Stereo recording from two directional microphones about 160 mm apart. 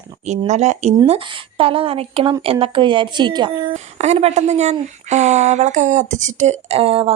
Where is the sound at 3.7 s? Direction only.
45° right (ahead or behind).